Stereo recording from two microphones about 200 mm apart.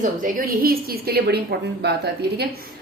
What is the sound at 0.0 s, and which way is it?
A woman's voice, 45° right (ahead or behind).